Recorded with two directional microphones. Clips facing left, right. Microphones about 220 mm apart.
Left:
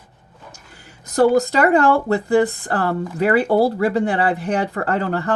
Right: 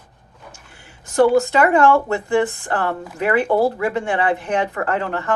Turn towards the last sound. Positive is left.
turn(degrees=35)  # may be behind; listen again after turning